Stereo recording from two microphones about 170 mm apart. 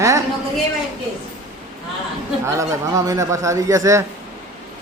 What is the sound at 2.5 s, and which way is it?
A man's voice, 20° right (ahead or behind).